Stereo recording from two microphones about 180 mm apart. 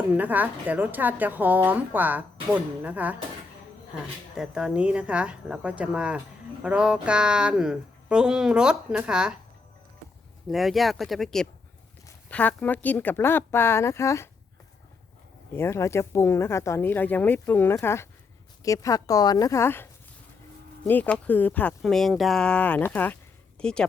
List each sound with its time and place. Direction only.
0.2 s a woman's voice: 10° right (ahead or behind)
4.4 s speech: 5° right (ahead or behind)
10.5 s speech: centre (ahead or behind); by 14.3 s 15° left (ahead or behind)
15.5 s speech: 15° left (ahead or behind)